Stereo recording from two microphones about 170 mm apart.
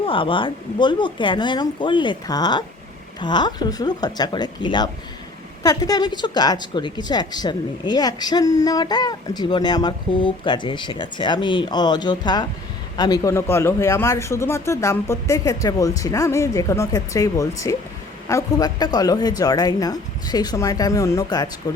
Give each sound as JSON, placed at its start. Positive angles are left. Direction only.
{"t": 0.0, "sound": "speech", "side_deg": 30}